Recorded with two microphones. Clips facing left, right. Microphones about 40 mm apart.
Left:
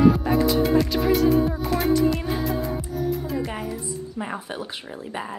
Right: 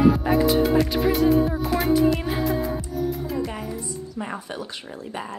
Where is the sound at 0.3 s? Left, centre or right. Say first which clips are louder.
Right 1 dB; centre.